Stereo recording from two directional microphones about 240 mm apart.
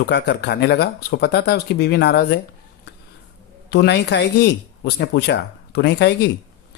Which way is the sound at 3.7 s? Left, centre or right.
Left.